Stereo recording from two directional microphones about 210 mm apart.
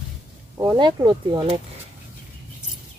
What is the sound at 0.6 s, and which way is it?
Speech, 15° right (ahead or behind).